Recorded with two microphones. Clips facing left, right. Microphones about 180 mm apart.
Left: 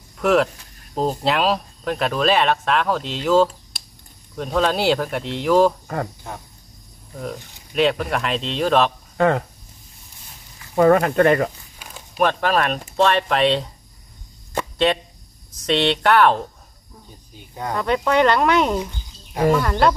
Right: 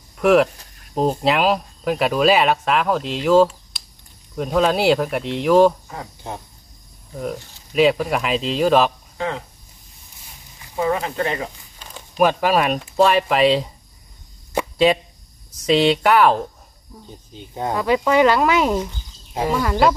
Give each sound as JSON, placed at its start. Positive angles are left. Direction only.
{"t": 0.2, "sound": "speech", "side_deg": 0}
{"t": 7.7, "sound": "speech", "side_deg": -5}
{"t": 9.1, "sound": "speech", "side_deg": 55}
{"t": 10.8, "sound": "speech", "side_deg": 60}
{"t": 11.8, "sound": "a sound", "side_deg": 10}
{"t": 12.2, "sound": "speech", "side_deg": -5}
{"t": 14.5, "sound": "a sound", "side_deg": -10}
{"t": 15.6, "sound": "speech", "side_deg": -5}
{"t": 17.3, "sound": "speech", "side_deg": -20}
{"t": 17.7, "sound": "speech", "side_deg": -5}